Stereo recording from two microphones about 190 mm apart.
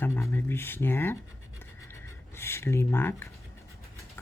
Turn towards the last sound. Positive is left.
turn(degrees=15)  # may be behind; listen again after turning